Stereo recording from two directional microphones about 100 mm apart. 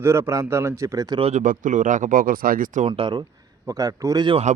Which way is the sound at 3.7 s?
35° right (ahead or behind).